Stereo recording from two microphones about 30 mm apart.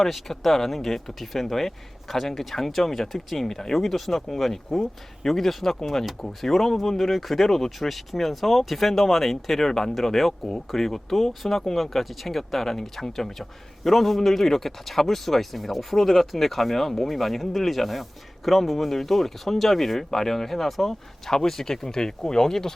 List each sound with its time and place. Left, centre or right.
0.0 s speech: centre
21.2 s speech: centre